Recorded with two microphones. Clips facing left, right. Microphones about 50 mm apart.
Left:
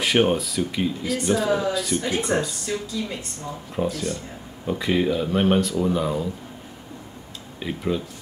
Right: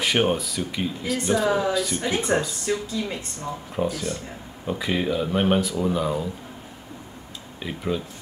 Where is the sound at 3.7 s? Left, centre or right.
Centre.